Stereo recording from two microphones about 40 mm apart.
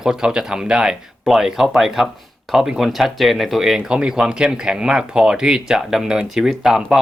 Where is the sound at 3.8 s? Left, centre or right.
Centre.